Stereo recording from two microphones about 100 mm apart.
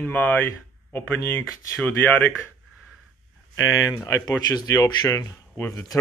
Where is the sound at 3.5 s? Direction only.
35° left (ahead or behind).